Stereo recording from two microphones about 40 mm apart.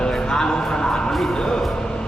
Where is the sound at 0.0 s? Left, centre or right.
Centre.